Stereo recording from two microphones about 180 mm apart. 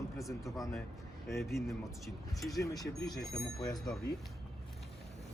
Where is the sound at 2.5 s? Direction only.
20° left (ahead or behind).